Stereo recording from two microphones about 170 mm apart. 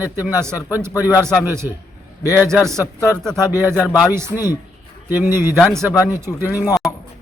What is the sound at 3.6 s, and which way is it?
Speech, 10° right (ahead or behind).